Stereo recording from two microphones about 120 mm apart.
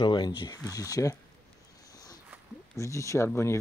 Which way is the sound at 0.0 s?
40° left (ahead or behind).